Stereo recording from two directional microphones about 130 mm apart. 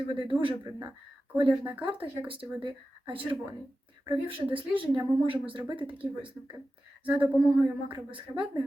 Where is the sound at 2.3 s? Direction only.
40° right (ahead or behind).